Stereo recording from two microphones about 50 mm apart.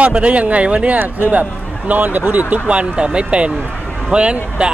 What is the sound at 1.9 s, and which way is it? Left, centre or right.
Speech, right.